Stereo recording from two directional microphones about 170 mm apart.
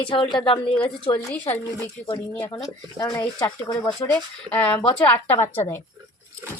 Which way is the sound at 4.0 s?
10° left (ahead or behind).